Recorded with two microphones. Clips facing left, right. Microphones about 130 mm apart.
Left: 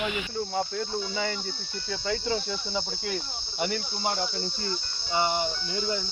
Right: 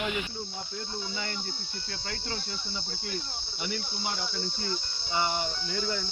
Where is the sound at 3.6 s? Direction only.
45° left (ahead or behind).